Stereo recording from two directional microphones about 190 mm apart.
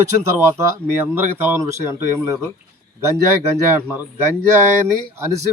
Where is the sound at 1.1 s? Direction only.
10° right (ahead or behind).